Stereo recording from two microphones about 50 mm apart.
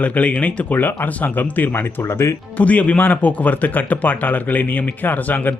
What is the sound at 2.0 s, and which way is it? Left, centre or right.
Speech, left.